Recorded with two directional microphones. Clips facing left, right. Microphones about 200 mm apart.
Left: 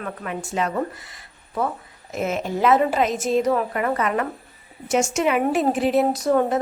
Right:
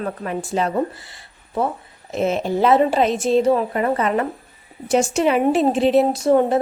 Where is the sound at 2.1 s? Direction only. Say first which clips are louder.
Right 5 dB; 30° right (ahead or behind).